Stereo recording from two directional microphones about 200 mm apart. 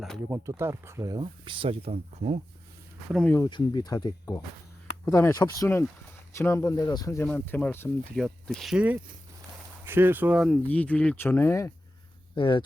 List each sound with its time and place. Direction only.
0.0 s speech: centre (ahead or behind)
0.3 s speech: 15° right (ahead or behind); by 2.4 s 30° right (ahead or behind)
3.1 s speech: centre (ahead or behind)
3.3 s speech: 20° left (ahead or behind)
12.4 s speech: 25° left (ahead or behind)